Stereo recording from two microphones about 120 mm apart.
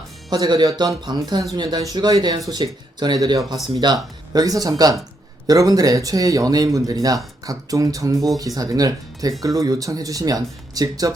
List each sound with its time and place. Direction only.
0.3 s speech: 35° right (ahead or behind)